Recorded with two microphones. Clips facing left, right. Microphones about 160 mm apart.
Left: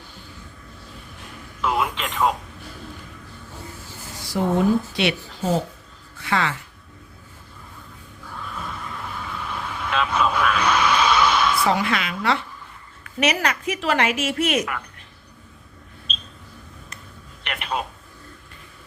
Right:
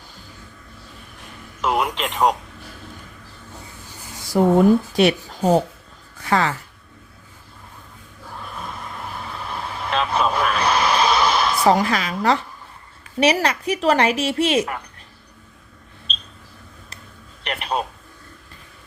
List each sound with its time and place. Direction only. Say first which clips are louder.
2.0 s a woman's voice: right 3 dB; 40° right (ahead or behind)
4.3 s a woman's voice: right 5 dB; 45° right (ahead or behind)
9.4 s vehicle: right 2 dB; 35° right (ahead or behind)
13.1 s a woman's voice: right 4 dB; 30° right (ahead or behind)
17.4 s telephone: right 3 dB; 35° right (ahead or behind)